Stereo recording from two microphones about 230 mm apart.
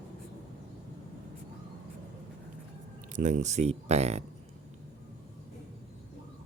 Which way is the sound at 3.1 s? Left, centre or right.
Right.